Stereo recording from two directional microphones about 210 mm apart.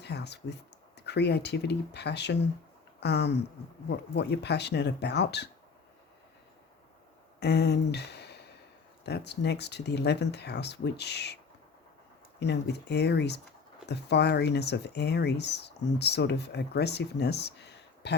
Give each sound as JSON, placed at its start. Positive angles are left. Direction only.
{"t": 0.0, "sound": "speech", "side_deg": 55}
{"t": 7.3, "sound": "a sound", "side_deg": 50}
{"t": 9.0, "sound": "speech", "side_deg": 50}
{"t": 12.4, "sound": "speech", "side_deg": 55}